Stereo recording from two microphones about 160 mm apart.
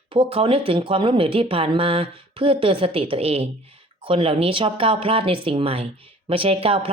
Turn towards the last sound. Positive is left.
turn(degrees=-35)  # may be behind; listen again after turning